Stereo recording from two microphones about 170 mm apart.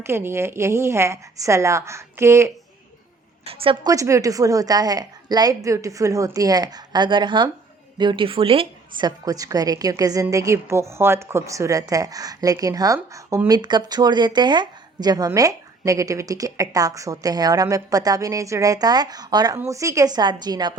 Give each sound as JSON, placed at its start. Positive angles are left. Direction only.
{"t": 0.0, "sound": "a woman's voice", "side_deg": -15}
{"t": 3.4, "sound": "a woman's voice", "side_deg": -35}
{"t": 3.8, "sound": "a woman's voice", "side_deg": -20}